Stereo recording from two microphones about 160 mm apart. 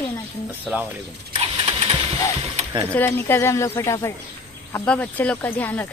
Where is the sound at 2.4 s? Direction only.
40° right (ahead or behind).